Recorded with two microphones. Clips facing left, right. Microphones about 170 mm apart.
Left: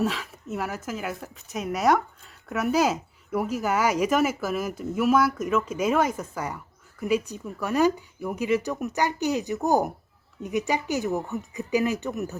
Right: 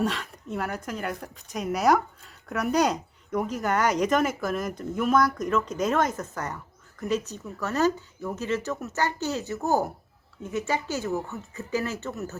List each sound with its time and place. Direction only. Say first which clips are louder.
0.0 s speech: left 1 dB; centre (ahead or behind)